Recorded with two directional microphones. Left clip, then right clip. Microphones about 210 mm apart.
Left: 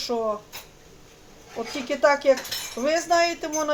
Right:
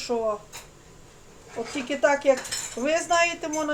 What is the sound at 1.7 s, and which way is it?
Speech, 15° left (ahead or behind).